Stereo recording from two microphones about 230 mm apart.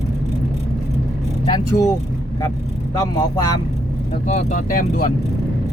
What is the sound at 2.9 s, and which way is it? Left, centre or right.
Speech, centre.